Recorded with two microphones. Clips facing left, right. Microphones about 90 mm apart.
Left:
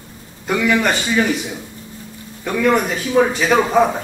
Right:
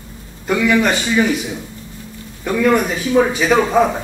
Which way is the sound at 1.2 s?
10° right (ahead or behind).